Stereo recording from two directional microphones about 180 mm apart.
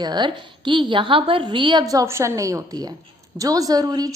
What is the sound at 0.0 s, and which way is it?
A woman's voice, 25° right (ahead or behind).